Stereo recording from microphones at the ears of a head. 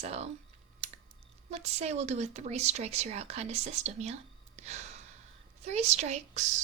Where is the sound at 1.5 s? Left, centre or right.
Right.